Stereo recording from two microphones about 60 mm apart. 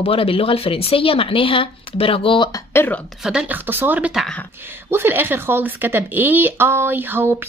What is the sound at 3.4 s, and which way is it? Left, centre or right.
A woman's voice, right.